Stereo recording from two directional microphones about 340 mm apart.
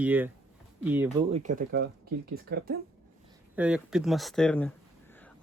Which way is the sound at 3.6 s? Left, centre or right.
Centre.